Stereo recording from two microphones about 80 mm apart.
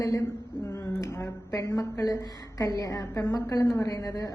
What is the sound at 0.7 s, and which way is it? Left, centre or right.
A woman's voice, left.